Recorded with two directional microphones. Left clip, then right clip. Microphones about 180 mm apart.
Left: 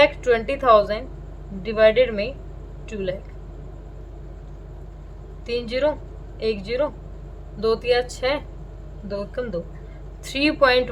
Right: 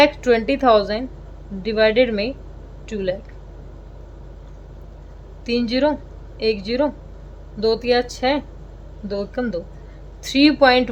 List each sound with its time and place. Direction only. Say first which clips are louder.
0.0 s a woman's voice: right 2 dB; 25° right (ahead or behind)
5.5 s a woman's voice: right 3 dB; 25° right (ahead or behind)